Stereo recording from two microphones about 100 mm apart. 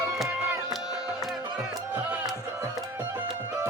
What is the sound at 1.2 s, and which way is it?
Music, 5° right (ahead or behind).